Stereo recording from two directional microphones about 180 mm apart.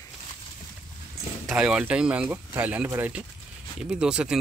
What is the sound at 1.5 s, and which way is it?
Speech, 5° right (ahead or behind).